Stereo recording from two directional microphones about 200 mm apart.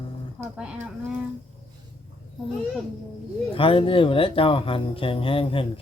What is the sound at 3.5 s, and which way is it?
Speech, 25° left (ahead or behind).